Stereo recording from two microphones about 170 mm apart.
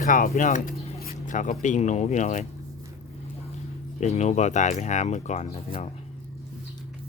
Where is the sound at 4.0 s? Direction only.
40° left (ahead or behind).